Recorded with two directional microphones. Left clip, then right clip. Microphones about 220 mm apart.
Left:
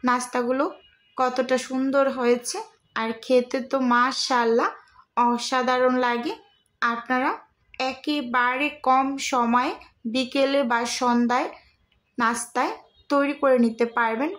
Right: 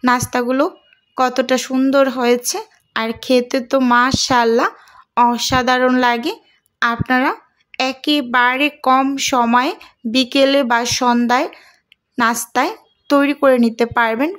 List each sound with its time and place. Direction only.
0.0 s speech: 40° right (ahead or behind)